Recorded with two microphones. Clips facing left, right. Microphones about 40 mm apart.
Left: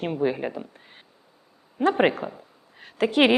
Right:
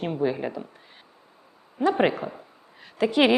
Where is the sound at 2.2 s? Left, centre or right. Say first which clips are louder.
Even; left.